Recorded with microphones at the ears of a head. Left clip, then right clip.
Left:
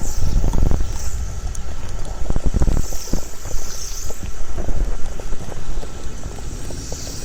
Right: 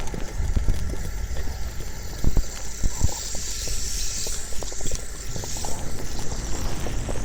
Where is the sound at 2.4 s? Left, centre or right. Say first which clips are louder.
Left 8 dB; left.